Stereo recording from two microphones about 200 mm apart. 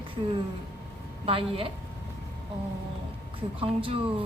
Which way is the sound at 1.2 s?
30° right (ahead or behind).